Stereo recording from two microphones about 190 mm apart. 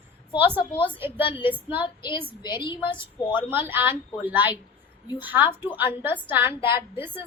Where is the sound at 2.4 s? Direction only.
25° left (ahead or behind).